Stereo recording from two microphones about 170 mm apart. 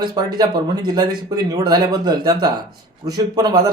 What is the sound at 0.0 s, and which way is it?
Speech, 25° right (ahead or behind).